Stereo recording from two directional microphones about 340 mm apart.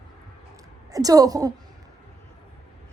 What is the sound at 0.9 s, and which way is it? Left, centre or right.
Speech, centre.